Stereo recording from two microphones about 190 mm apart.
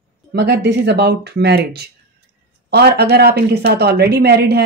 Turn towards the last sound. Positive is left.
turn(degrees=-60)  # may be behind; listen again after turning